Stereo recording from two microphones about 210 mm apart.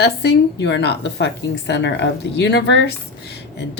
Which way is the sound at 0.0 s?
50° left (ahead or behind).